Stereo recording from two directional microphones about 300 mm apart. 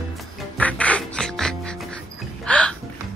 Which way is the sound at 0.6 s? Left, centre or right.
Centre.